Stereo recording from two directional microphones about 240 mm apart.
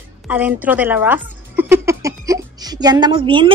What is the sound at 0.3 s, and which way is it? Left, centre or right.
A woman's voice, centre.